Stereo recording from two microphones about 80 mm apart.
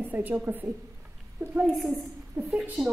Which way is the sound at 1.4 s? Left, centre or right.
Right.